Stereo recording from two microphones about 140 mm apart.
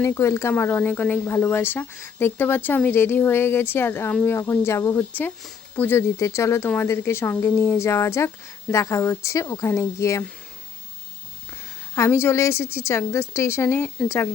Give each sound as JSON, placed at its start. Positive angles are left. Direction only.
{"t": 0.0, "sound": "speech", "side_deg": 20}
{"t": 11.9, "sound": "speech", "side_deg": 20}